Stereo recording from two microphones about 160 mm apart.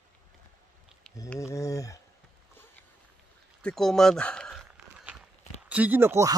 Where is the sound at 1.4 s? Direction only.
20° left (ahead or behind).